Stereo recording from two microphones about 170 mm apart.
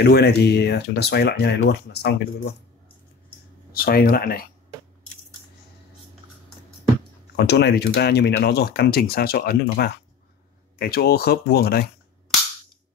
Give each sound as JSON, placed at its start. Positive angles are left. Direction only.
{"t": 0.0, "sound": "speech", "side_deg": 75}
{"t": 3.8, "sound": "speech", "side_deg": 60}
{"t": 7.3, "sound": "speech", "side_deg": 75}